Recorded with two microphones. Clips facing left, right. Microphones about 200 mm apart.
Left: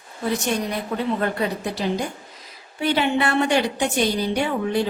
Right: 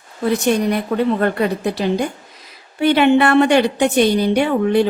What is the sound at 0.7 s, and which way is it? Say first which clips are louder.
Speech: right 7 dB; 60° right (ahead or behind).